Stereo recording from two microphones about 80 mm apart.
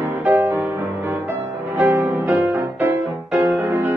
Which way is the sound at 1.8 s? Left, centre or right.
Right.